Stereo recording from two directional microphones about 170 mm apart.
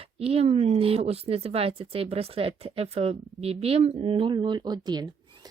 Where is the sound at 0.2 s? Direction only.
35° right (ahead or behind).